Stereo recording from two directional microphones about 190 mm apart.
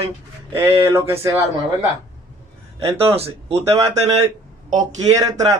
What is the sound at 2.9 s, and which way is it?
Speech, 15° right (ahead or behind).